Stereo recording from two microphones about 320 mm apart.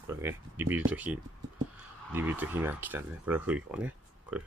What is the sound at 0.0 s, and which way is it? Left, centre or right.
Speech, centre.